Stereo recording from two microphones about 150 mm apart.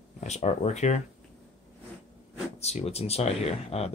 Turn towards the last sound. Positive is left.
turn(degrees=45)  # may be behind; listen again after turning